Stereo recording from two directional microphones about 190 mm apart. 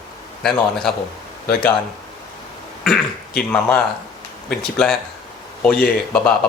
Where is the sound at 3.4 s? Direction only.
5° left (ahead or behind).